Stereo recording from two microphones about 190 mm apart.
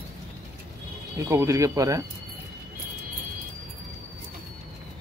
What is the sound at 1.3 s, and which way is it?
Speech, 15° right (ahead or behind).